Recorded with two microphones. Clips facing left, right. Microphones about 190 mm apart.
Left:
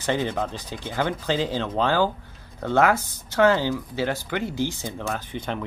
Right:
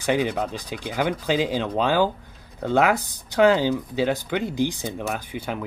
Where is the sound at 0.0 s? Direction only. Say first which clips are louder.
Right 2 dB; 15° right (ahead or behind).